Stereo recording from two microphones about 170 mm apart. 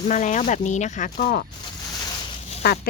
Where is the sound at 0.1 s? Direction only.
45° left (ahead or behind).